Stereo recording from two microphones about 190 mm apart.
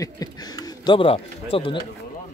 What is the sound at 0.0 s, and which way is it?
Speech, 20° left (ahead or behind).